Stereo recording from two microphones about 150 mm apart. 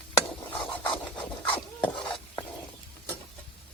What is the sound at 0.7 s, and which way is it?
Filing, 35° left (ahead or behind).